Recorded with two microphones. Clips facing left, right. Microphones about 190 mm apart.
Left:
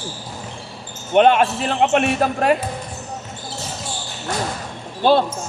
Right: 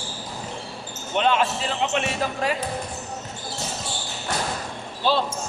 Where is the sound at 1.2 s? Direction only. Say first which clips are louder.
Left 8 dB; 60° left (ahead or behind).